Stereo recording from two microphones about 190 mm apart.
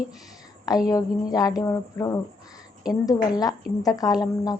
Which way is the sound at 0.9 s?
20° left (ahead or behind).